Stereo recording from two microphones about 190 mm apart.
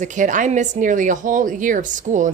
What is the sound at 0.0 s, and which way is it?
A woman's voice, 40° right (ahead or behind).